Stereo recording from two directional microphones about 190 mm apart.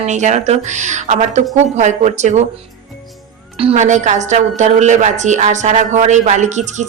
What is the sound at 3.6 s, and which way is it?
A woman's voice, 35° right (ahead or behind).